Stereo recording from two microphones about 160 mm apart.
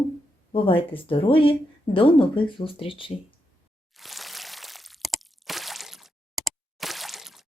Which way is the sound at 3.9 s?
Centre (ahead or behind).